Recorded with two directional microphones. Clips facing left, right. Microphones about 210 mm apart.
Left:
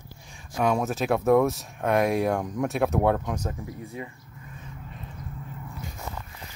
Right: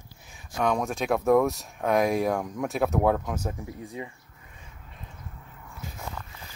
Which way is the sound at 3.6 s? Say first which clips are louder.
Even; 20° right (ahead or behind).